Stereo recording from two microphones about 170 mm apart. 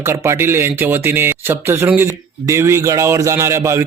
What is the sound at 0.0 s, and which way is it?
Speech, 15° right (ahead or behind).